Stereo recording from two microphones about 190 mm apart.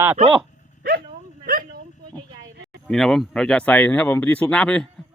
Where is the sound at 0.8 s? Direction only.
55° right (ahead or behind).